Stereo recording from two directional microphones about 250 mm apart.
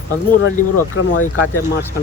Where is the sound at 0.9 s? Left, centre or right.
Left.